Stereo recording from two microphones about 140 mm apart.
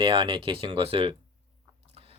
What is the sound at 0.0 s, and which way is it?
Speech, 35° right (ahead or behind).